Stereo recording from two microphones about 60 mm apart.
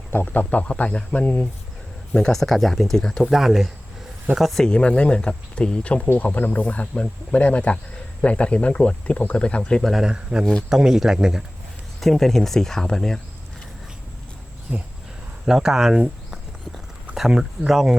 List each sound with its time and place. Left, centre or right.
0.3 s speech: left
2.1 s speech: centre
3.2 s speech: centre
4.6 s speech: centre
9.8 s speech: centre
11.9 s speech: centre
15.4 s speech: centre